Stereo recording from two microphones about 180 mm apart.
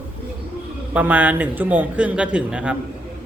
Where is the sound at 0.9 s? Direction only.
10° right (ahead or behind).